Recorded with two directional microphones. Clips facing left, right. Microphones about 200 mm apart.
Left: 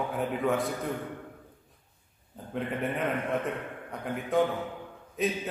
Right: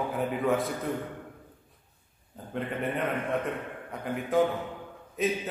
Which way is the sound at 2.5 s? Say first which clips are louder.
Even; centre (ahead or behind).